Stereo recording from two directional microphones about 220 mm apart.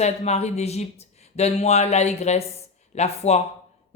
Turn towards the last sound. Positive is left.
turn(degrees=30)  # may be behind; listen again after turning